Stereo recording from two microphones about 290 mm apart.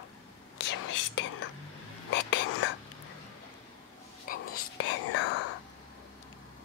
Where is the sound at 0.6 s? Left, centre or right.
Left.